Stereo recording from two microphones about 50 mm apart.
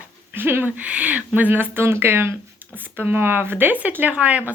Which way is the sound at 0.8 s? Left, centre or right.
Right.